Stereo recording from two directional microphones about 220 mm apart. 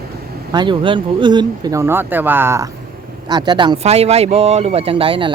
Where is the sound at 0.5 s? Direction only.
20° right (ahead or behind).